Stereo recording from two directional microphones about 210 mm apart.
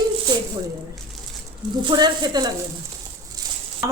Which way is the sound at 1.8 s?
20° right (ahead or behind).